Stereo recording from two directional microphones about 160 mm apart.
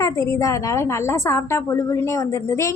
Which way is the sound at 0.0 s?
20° left (ahead or behind).